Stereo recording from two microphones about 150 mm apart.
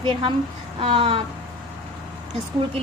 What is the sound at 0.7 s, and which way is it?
Speech, 35° right (ahead or behind).